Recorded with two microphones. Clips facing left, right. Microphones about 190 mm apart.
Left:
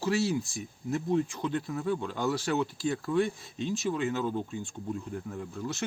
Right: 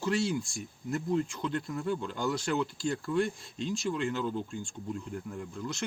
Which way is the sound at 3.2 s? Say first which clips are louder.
Left 2 dB; centre (ahead or behind).